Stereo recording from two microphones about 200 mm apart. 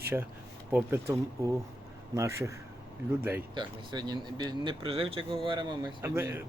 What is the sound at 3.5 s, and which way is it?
Speech, 20° right (ahead or behind).